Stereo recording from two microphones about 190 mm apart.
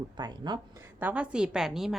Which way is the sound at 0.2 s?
20° right (ahead or behind).